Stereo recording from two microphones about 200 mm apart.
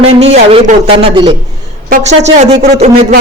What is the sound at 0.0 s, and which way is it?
A man's voice, 30° right (ahead or behind).